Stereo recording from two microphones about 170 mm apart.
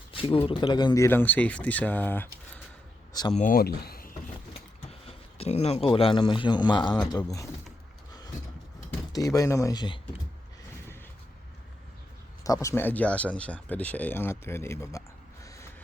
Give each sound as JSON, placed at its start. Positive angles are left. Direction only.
{"t": 0.1, "sound": "speech", "side_deg": 30}
{"t": 3.3, "sound": "speech", "side_deg": 50}
{"t": 4.9, "sound": "speech", "side_deg": 35}
{"t": 9.1, "sound": "speech", "side_deg": 20}
{"t": 12.4, "sound": "speech", "side_deg": 20}